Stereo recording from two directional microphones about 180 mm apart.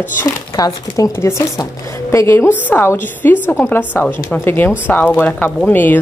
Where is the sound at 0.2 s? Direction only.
20° left (ahead or behind).